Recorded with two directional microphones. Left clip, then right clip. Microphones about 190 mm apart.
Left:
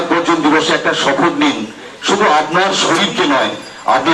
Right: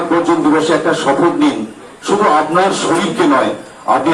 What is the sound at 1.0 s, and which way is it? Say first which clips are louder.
A man's voice: right 1 dB; 30° left (ahead or behind).